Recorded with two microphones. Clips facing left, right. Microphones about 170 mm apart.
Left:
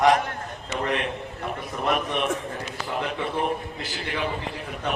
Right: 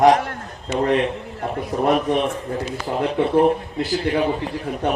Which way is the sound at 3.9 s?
40° right (ahead or behind).